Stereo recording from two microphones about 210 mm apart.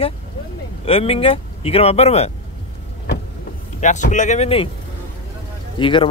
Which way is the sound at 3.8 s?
35° left (ahead or behind).